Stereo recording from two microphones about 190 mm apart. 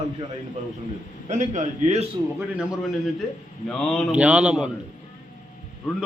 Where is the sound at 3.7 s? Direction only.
5° left (ahead or behind).